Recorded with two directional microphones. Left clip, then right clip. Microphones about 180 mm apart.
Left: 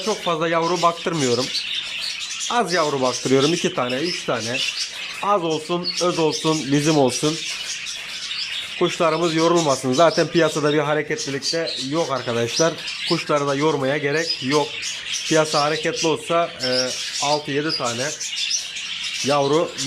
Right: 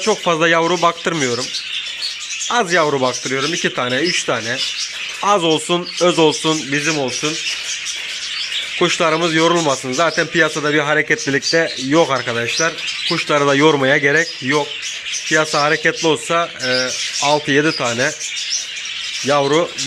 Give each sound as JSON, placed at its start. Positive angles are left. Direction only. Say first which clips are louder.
{"t": 0.0, "sound": "speech", "louder": "right 7 dB", "side_deg": -5}
{"t": 2.5, "sound": "speech", "louder": "right 5 dB", "side_deg": 0}
{"t": 3.2, "sound": "speech", "louder": "left 2 dB", "side_deg": 15}
{"t": 3.6, "sound": "speech", "louder": "right 4 dB", "side_deg": 0}
{"t": 6.7, "sound": "speech", "louder": "even", "side_deg": 15}
{"t": 8.8, "sound": "speech", "louder": "right 4 dB", "side_deg": 5}
{"t": 11.3, "sound": "speech", "louder": "right 7 dB", "side_deg": -10}
{"t": 12.4, "sound": "speech", "louder": "right 2 dB", "side_deg": 10}
{"t": 13.2, "sound": "speech", "louder": "right 8 dB", "side_deg": -5}
{"t": 19.3, "sound": "speech", "louder": "right 4 dB", "side_deg": 0}